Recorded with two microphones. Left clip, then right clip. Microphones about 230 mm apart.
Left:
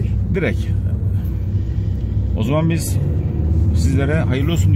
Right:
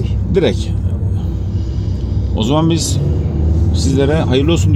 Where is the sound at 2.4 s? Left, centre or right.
Left.